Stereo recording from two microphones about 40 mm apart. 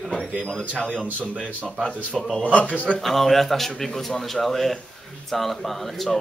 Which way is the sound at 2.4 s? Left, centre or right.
Left.